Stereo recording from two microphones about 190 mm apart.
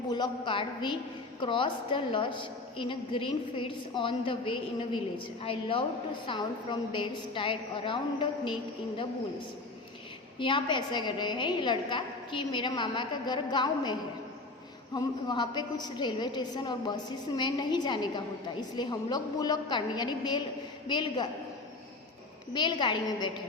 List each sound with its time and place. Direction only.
0.1 s a woman's voice: 25° left (ahead or behind)
10.3 s a woman's voice: 25° left (ahead or behind)
14.9 s a woman's voice: 20° left (ahead or behind)
22.5 s a woman's voice: 25° left (ahead or behind)